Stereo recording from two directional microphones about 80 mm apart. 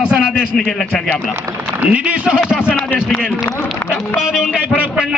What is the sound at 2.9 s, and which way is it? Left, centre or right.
Speech, left.